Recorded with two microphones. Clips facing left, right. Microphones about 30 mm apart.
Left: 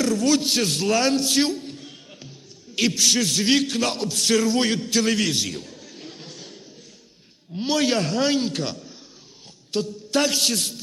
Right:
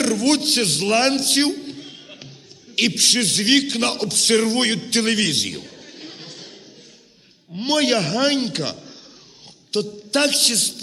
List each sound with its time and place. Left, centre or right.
0.0 s a man's voice: right
0.3 s a man's voice: right
1.4 s a sound: right
2.7 s a man's voice: right
5.5 s a sound: right
7.7 s a man's voice: right
8.3 s speech: right
8.5 s a man's voice: right
10.5 s a man's voice: right